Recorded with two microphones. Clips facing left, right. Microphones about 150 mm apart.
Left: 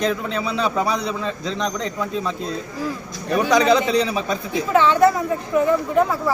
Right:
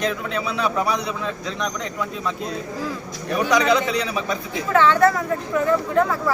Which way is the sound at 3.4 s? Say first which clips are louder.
Left 2 dB; 30° left (ahead or behind).